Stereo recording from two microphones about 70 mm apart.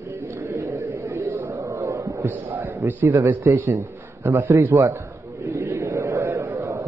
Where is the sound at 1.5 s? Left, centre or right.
Right.